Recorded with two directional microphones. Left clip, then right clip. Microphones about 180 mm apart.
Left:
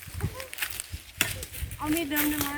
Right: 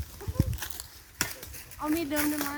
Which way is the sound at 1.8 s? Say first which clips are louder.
Left 1 dB; 5° left (ahead or behind).